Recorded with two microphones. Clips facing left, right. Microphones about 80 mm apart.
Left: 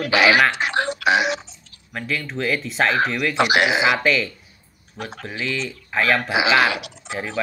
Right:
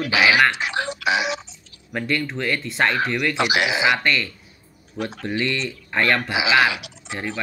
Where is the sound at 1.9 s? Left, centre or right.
Centre.